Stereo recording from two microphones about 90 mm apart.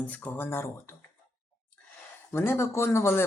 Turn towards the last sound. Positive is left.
turn(degrees=30)  # may be behind; listen again after turning